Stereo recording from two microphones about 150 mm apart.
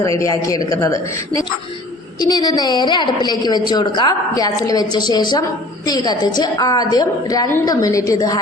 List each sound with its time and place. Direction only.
0.2 s a woman's voice: 20° left (ahead or behind)